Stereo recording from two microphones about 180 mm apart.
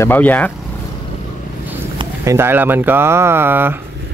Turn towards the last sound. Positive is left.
turn(degrees=-10)  # may be behind; listen again after turning